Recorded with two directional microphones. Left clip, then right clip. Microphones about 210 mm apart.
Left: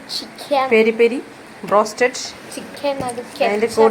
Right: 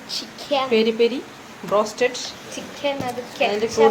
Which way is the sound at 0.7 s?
50° left (ahead or behind).